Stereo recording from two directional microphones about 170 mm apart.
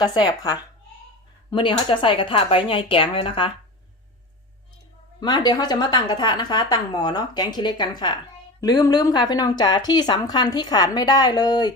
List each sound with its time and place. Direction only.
0.0 s a woman's voice: 25° left (ahead or behind)
5.2 s speech: 25° left (ahead or behind)